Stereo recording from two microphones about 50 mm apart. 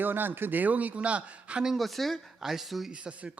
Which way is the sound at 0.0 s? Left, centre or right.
Right.